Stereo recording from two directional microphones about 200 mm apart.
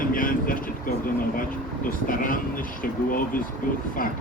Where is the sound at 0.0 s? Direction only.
45° left (ahead or behind).